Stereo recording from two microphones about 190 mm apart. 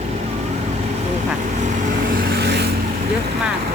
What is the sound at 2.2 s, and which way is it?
Vehicle, 60° right (ahead or behind).